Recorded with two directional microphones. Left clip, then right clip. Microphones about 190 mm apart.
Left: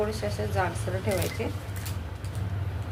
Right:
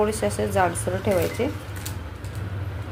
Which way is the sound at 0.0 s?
45° right (ahead or behind).